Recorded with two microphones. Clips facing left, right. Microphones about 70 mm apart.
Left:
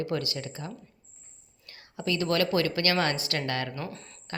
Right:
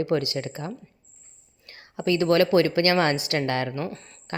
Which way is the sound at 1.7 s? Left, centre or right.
Right.